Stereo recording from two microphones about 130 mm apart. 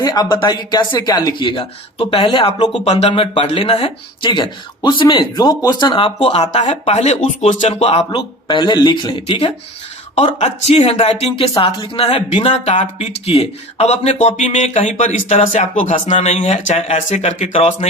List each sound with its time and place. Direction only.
0.0 s speech: 30° left (ahead or behind)
6.1 s speech: 55° left (ahead or behind)
10.2 s speech: 60° left (ahead or behind); by 12.0 s 40° left (ahead or behind)
12.4 s speech: 55° left (ahead or behind); by 16.1 s 70° left (ahead or behind)
16.1 s speech: 55° left (ahead or behind)